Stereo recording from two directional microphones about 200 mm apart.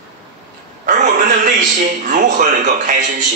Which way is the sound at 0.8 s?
40° right (ahead or behind).